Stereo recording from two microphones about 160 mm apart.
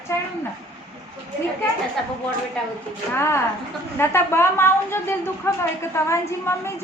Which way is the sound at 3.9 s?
15° left (ahead or behind).